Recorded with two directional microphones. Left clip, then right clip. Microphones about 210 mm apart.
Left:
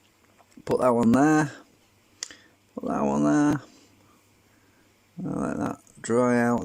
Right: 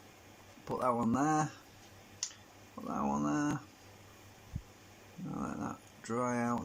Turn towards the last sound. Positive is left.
turn(degrees=50)  # may be behind; listen again after turning